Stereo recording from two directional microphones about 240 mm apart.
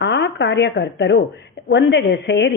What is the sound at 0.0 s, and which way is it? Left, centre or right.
A woman's voice, left.